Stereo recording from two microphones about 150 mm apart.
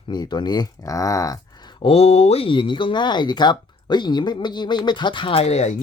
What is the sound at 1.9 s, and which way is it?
Speech, 45° left (ahead or behind).